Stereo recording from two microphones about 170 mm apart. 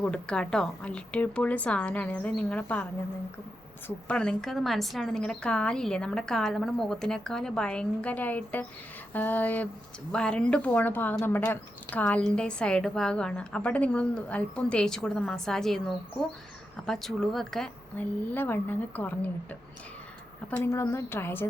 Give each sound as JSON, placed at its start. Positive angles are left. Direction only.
{"t": 0.0, "sound": "a woman's voice", "side_deg": 5}
{"t": 3.8, "sound": "a woman's voice", "side_deg": 5}
{"t": 20.6, "sound": "a woman's voice", "side_deg": 15}